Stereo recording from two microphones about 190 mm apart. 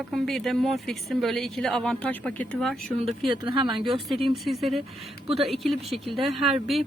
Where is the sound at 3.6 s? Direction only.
25° right (ahead or behind).